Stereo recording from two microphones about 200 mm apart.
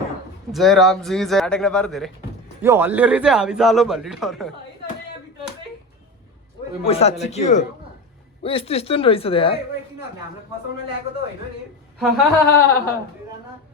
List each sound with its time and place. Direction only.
0.5 s a man's voice: centre (ahead or behind)
2.6 s a man's voice: 10° right (ahead or behind)
6.8 s speech: 30° left (ahead or behind)
11.9 s speech: centre (ahead or behind)
12.4 s speech: 10° left (ahead or behind)